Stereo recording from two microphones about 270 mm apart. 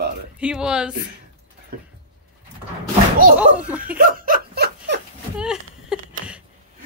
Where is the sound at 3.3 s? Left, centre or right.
Centre.